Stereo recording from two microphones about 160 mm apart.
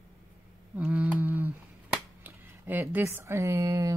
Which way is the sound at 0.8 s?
10° right (ahead or behind).